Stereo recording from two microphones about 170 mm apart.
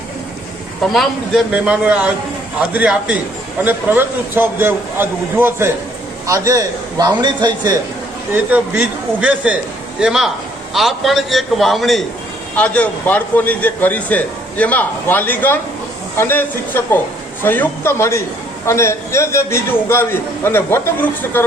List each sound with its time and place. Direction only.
0.8 s a man's voice: centre (ahead or behind); by 7.8 s 25° right (ahead or behind)
8.3 s a man's voice: 10° right (ahead or behind); by 21.4 s 15° left (ahead or behind)